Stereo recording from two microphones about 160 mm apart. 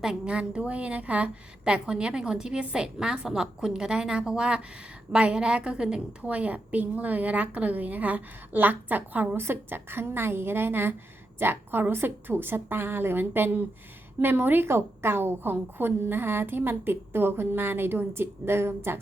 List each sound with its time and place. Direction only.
0.0 s a woman's voice: 5° right (ahead or behind)